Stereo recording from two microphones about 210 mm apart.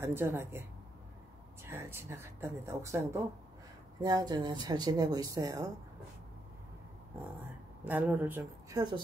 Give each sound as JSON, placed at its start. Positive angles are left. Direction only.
{"t": 0.0, "sound": "a woman's voice", "side_deg": -10}
{"t": 1.7, "sound": "a woman's voice", "side_deg": -10}
{"t": 7.8, "sound": "a woman's voice", "side_deg": -10}